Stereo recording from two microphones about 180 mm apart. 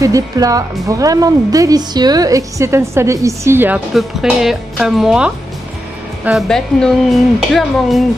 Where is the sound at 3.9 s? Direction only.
Centre (ahead or behind).